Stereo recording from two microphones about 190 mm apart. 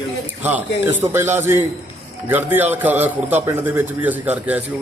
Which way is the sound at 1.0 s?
10° right (ahead or behind).